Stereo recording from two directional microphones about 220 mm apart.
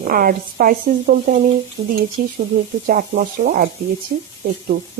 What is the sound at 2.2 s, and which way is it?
Speech, 45° right (ahead or behind).